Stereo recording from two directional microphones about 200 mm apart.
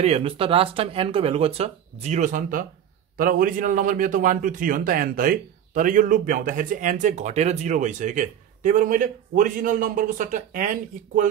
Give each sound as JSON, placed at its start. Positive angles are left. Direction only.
{"t": 0.0, "sound": "a man's voice", "side_deg": -30}